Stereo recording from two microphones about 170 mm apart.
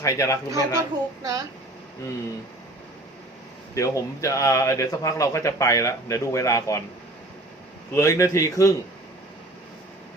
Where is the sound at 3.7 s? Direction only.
20° left (ahead or behind).